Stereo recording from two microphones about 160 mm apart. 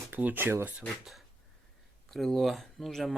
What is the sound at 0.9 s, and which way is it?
Speech, centre (ahead or behind).